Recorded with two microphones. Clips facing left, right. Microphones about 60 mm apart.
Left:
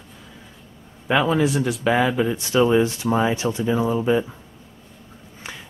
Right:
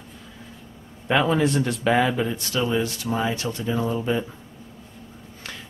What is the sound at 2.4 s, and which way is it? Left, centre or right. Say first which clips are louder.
Speech: left 7 dB; left.